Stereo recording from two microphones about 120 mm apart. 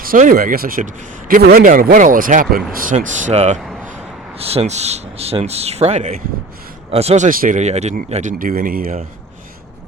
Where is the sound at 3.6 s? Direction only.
Centre (ahead or behind).